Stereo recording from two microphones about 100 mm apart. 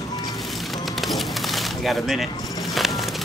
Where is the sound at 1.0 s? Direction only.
Centre (ahead or behind).